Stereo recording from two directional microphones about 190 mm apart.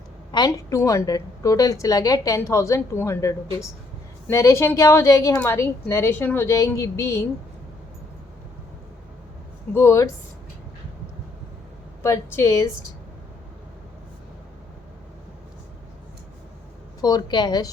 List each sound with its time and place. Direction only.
0.3 s a woman's voice: 20° left (ahead or behind)
9.7 s a woman's voice: 15° left (ahead or behind)
12.0 s a woman's voice: 15° left (ahead or behind)
17.0 s a woman's voice: 20° left (ahead or behind)